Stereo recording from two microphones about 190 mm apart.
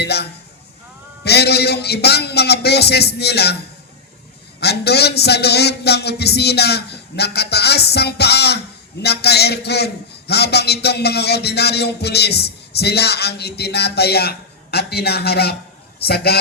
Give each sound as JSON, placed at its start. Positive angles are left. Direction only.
{"t": 0.0, "sound": "a man's voice", "side_deg": 60}
{"t": 4.6, "sound": "a man's voice", "side_deg": 60}